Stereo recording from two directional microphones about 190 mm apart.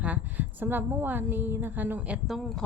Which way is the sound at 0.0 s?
10° right (ahead or behind).